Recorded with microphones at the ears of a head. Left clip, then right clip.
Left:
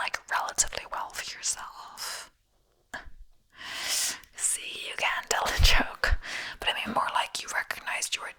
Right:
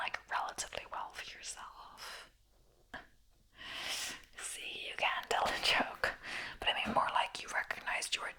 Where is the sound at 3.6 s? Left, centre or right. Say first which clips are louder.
Left 9 dB; left.